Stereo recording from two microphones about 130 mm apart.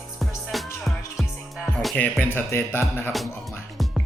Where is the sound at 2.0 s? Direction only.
15° left (ahead or behind).